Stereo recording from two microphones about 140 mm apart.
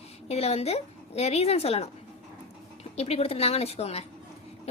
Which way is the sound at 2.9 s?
45° left (ahead or behind).